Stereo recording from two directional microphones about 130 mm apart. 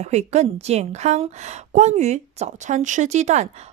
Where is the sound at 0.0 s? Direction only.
60° right (ahead or behind).